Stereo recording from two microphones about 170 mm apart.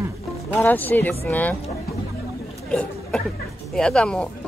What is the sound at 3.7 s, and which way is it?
Speech, 5° left (ahead or behind).